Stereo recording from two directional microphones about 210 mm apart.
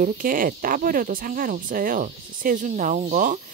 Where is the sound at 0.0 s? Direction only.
40° right (ahead or behind).